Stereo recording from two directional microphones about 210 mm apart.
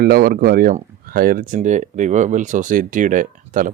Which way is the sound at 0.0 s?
45° right (ahead or behind).